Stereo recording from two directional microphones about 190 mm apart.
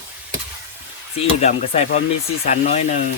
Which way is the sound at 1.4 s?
40° left (ahead or behind).